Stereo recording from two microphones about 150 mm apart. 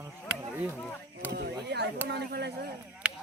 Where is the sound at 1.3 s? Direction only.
90° right.